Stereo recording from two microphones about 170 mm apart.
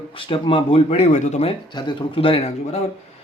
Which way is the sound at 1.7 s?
25° left (ahead or behind).